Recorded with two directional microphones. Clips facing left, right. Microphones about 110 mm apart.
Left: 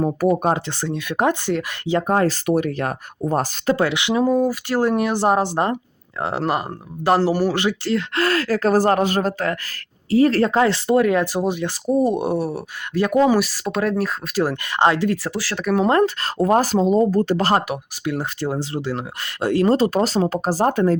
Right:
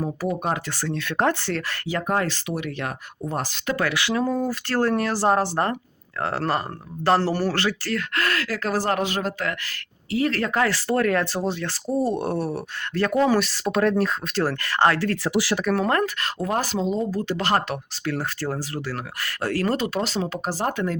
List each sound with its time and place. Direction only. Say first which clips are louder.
0.0 s speech: left 8 dB; 55° left (ahead or behind)
0.5 s speech: left 4 dB; 20° left (ahead or behind); by 3.8 s 40° left (ahead or behind)
3.8 s speech: left 1 dB; 20° left (ahead or behind); by 14.4 s 5° left (ahead or behind)
14.4 s speech: left 2 dB; 15° left (ahead or behind)
15.3 s speech: right 4 dB; 15° right (ahead or behind)
15.8 s speech: left 6 dB; 25° left (ahead or behind); by 17.5 s 40° left (ahead or behind)
17.7 s speech: left 3 dB; 15° left (ahead or behind)
19.7 s speech: left 7 dB; 35° left (ahead or behind)